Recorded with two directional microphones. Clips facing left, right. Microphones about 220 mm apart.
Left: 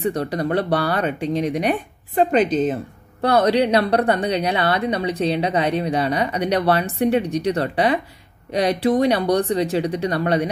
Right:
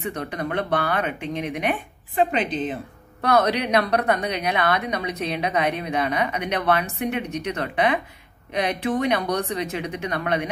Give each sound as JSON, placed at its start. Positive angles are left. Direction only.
{"t": 0.0, "sound": "a woman's voice", "side_deg": 35}
{"t": 3.2, "sound": "a woman's voice", "side_deg": 30}